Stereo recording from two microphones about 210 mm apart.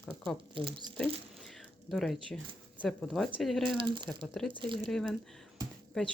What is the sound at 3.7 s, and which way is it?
Speech, 20° right (ahead or behind).